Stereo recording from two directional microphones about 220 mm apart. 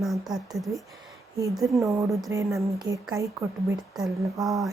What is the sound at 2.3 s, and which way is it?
Speech, 15° right (ahead or behind).